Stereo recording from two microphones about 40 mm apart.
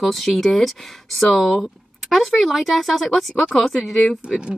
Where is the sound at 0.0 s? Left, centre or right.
Centre.